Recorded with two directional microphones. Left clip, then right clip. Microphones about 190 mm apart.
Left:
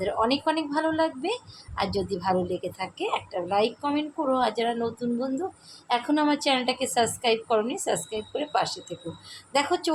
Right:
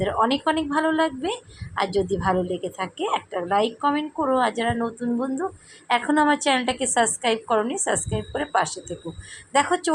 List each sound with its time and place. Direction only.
0.0 s a woman's voice: 15° right (ahead or behind)